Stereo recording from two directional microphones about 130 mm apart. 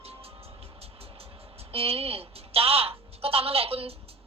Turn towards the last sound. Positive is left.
turn(degrees=-50)  # may be behind; listen again after turning